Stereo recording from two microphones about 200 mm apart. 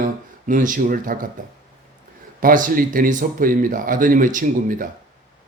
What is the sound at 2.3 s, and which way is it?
Speech, 45° right (ahead or behind).